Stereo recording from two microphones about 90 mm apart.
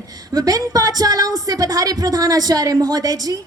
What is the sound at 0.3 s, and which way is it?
A woman's voice, 45° right (ahead or behind).